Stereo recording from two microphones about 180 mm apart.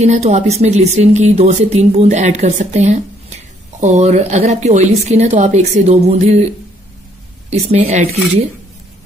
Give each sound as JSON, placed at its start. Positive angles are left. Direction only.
{"t": 0.0, "sound": "speech", "side_deg": -40}